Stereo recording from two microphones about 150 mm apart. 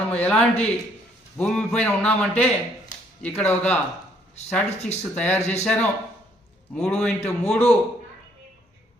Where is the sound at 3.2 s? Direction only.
10° left (ahead or behind).